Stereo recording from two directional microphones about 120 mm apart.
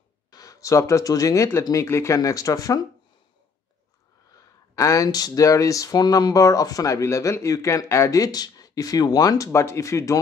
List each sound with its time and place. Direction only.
0.3 s speech: 30° left (ahead or behind)
4.4 s speech: 25° left (ahead or behind)